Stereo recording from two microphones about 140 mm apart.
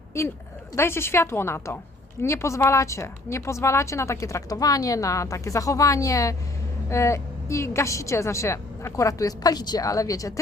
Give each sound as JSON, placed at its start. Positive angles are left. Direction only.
{"t": 0.1, "sound": "a woman's voice", "side_deg": 20}